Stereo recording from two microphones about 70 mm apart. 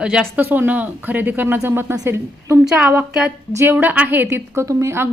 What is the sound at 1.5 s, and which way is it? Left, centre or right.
A woman's voice, right.